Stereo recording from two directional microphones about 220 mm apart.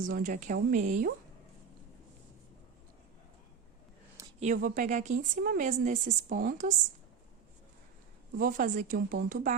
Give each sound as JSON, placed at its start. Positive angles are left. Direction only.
{"t": 0.0, "sound": "a woman's voice", "side_deg": -40}
{"t": 4.4, "sound": "a woman's voice", "side_deg": -35}
{"t": 8.4, "sound": "a woman's voice", "side_deg": -40}